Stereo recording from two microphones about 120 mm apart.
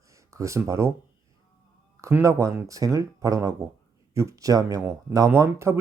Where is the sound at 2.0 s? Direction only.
25° right (ahead or behind).